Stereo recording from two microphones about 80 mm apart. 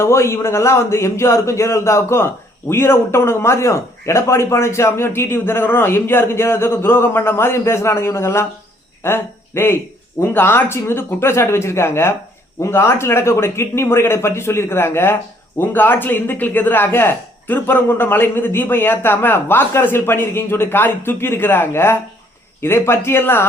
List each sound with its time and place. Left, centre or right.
0.0 s a man's voice: left